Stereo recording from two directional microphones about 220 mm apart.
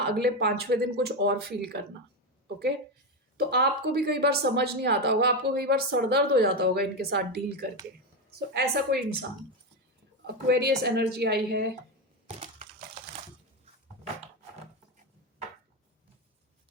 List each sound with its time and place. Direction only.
0.0 s speech: 45° right (ahead or behind)
3.3 s speech: 45° right (ahead or behind)
10.2 s speech: 45° right (ahead or behind)
12.4 s typing: 30° right (ahead or behind)